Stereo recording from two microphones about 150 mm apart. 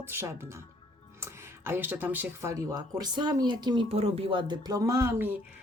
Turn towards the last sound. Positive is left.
turn(degrees=-20)  # may be behind; listen again after turning